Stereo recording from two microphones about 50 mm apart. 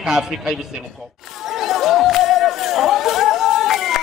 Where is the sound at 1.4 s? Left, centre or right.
Centre.